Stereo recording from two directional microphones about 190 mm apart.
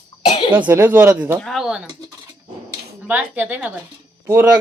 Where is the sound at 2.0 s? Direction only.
20° right (ahead or behind).